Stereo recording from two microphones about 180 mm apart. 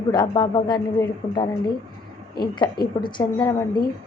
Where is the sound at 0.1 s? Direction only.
25° left (ahead or behind).